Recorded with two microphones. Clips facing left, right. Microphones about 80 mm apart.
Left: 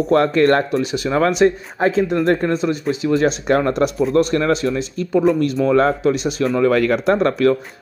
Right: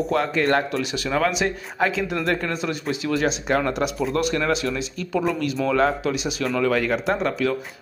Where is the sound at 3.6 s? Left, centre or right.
Left.